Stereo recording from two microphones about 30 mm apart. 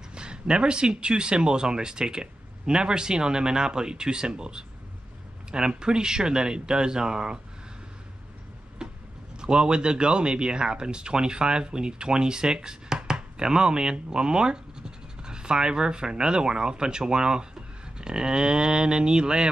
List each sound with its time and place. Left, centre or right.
0.1 s speech: right
9.4 s speech: right